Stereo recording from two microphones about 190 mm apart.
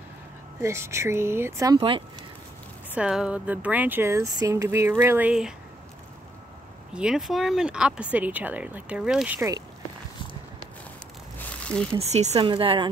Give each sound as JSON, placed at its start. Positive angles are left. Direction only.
{"t": 0.6, "sound": "speech", "side_deg": -15}
{"t": 1.8, "sound": "speech", "side_deg": -25}
{"t": 2.9, "sound": "speech", "side_deg": -5}
{"t": 6.9, "sound": "speech", "side_deg": -5}
{"t": 11.3, "sound": "a sound", "side_deg": 5}
{"t": 12.0, "sound": "speech", "side_deg": -35}